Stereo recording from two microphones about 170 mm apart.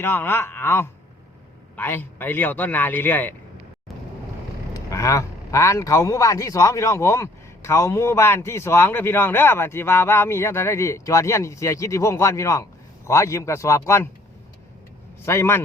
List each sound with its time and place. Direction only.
0.0 s a man's voice: 15° left (ahead or behind)
4.7 s a man's voice: 20° left (ahead or behind)
15.2 s a man's voice: 15° left (ahead or behind)